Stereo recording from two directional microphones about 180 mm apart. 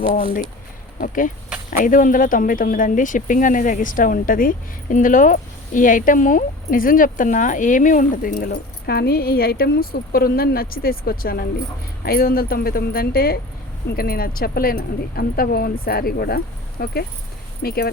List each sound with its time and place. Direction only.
0.9 s speech: 50° left (ahead or behind)